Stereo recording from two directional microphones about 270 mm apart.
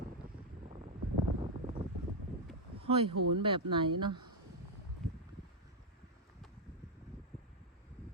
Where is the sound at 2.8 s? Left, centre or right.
Right.